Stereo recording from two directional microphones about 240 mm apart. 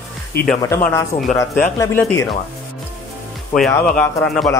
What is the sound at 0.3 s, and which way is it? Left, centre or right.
Speech, left.